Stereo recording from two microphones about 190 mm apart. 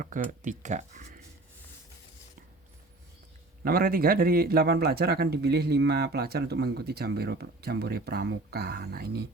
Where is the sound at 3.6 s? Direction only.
50° right (ahead or behind).